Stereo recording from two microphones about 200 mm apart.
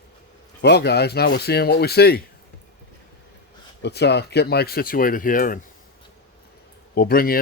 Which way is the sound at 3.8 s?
55° left (ahead or behind).